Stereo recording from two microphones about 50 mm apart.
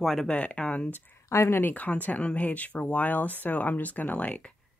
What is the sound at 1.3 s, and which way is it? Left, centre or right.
Speech, left.